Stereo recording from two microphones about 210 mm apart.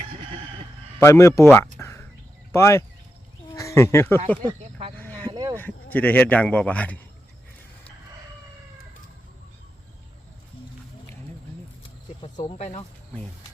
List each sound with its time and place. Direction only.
0.9 s speech: 15° left (ahead or behind)
1.5 s a sound: 15° left (ahead or behind)
2.5 s speech: 15° left (ahead or behind)
4.4 s a sound: 25° right (ahead or behind)
4.9 s cricket: 10° left (ahead or behind)
5.3 s sheep: 20° right (ahead or behind)
5.5 s speech: 10° left (ahead or behind)
12.2 s speech: 30° left (ahead or behind)